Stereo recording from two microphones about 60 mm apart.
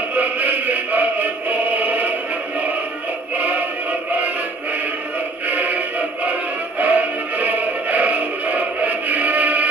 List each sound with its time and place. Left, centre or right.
0.1 s music: right
3.3 s music: right
5.5 s music: right